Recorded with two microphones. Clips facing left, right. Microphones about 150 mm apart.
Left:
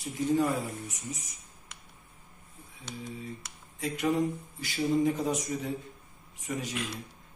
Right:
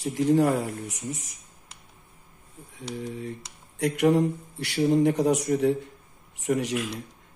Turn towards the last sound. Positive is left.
turn(degrees=-75)  # may be behind; listen again after turning